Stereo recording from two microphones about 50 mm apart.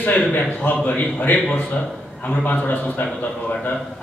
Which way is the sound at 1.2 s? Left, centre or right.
Left.